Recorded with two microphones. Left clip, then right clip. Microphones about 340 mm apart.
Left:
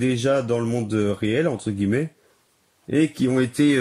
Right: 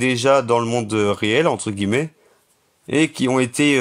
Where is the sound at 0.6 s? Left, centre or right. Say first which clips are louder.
Right 5 dB; right.